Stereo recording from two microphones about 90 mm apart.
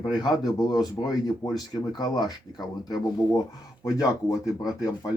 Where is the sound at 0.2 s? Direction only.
45° left (ahead or behind).